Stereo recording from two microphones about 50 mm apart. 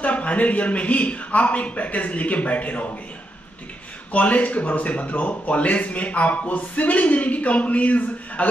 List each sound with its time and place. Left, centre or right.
0.0 s speech: left
4.1 s speech: left